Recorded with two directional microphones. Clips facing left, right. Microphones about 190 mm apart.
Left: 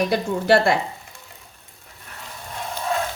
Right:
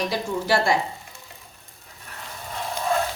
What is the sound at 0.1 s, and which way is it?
Speech, 60° left (ahead or behind).